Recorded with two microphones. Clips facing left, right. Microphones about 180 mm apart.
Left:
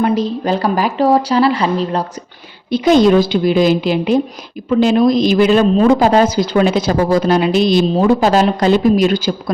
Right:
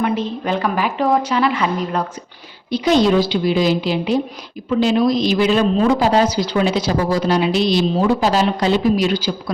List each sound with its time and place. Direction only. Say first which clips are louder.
0.0 s speech: left 5 dB; 35° left (ahead or behind)
2.6 s speech: left 4 dB; 50° left (ahead or behind)